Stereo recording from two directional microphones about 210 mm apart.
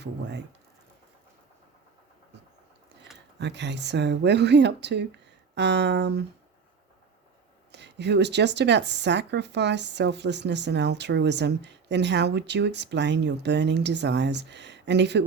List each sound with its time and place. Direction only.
0.0 s speech: 55° right (ahead or behind)
3.3 s speech: 55° right (ahead or behind)
7.7 s speech: 55° right (ahead or behind)